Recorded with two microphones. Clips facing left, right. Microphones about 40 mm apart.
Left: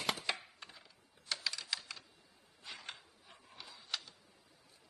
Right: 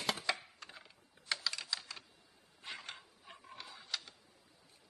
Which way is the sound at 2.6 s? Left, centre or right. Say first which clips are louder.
Right 3 dB; right.